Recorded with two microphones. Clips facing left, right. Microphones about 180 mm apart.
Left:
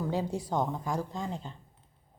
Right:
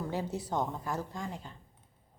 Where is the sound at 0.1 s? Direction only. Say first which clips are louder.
Left 3 dB; 15° left (ahead or behind).